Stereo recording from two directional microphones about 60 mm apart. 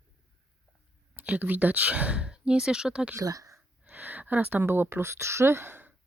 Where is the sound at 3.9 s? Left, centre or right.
Right.